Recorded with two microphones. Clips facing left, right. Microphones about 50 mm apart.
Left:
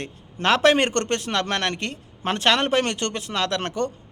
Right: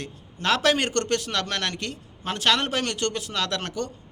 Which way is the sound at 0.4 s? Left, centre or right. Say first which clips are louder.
Left 4 dB; left.